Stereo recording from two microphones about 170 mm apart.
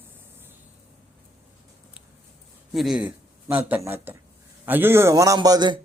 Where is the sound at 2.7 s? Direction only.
Centre (ahead or behind).